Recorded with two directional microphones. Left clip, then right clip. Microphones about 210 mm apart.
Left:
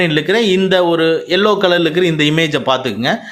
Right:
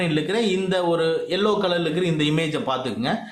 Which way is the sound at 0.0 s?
30° left (ahead or behind).